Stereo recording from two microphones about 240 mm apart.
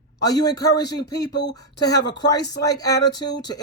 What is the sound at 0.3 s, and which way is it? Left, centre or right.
Speech, centre.